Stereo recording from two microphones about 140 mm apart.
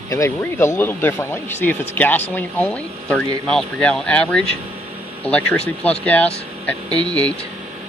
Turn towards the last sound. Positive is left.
turn(degrees=-30)  # may be behind; listen again after turning